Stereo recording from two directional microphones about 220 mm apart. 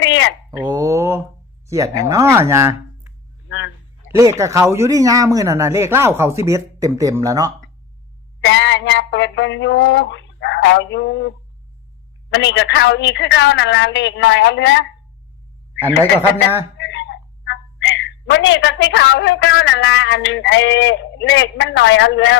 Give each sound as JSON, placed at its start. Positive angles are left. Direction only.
{"t": 0.0, "sound": "a sound", "side_deg": 55}
{"t": 0.5, "sound": "mantra", "side_deg": -15}
{"t": 1.6, "sound": "speech", "side_deg": -15}
{"t": 4.2, "sound": "speech", "side_deg": -15}
{"t": 8.4, "sound": "a sound", "side_deg": 55}
{"t": 16.7, "sound": "speech", "side_deg": 55}